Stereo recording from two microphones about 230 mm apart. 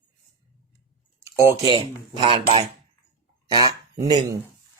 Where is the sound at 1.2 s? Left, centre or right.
Centre.